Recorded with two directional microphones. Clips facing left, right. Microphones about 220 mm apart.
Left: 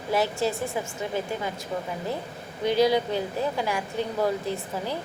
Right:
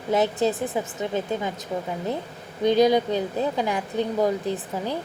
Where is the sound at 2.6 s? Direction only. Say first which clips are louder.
Right 3 dB; 20° right (ahead or behind).